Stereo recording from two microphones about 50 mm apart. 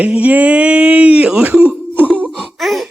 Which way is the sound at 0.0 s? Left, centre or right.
Right.